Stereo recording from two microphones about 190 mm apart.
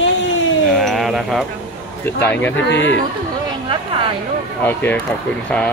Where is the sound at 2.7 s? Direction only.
70° left (ahead or behind).